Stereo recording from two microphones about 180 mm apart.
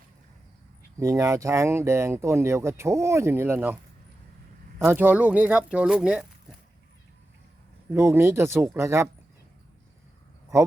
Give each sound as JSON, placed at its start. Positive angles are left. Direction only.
{"t": 0.9, "sound": "speech", "side_deg": -15}
{"t": 4.8, "sound": "speech", "side_deg": -10}
{"t": 7.9, "sound": "speech", "side_deg": -15}